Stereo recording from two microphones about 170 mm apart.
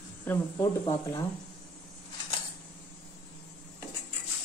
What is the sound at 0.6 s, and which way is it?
Speech, 25° left (ahead or behind).